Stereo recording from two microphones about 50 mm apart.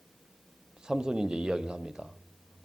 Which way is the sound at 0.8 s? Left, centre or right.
Centre.